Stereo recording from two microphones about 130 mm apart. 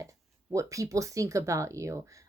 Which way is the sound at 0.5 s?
25° right (ahead or behind).